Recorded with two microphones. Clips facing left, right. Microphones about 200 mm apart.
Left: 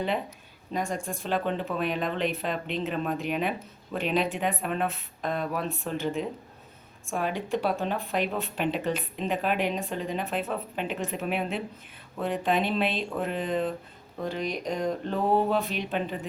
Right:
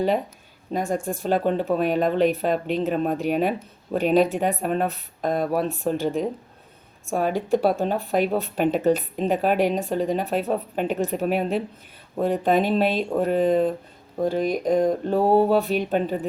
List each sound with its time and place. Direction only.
0.7 s speech: 40° right (ahead or behind)
15.2 s speech: 35° right (ahead or behind)